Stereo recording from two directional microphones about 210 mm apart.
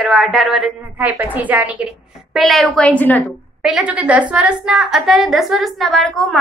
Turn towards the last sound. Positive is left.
turn(degrees=0)  # may be behind; listen again after turning